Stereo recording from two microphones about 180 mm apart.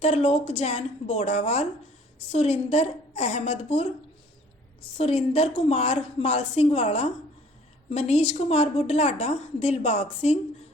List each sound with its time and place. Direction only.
0.0 s a woman's voice: 40° left (ahead or behind)
4.9 s a woman's voice: 30° left (ahead or behind)